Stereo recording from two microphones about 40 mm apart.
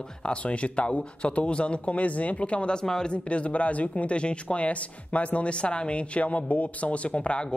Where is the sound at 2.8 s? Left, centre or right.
Centre.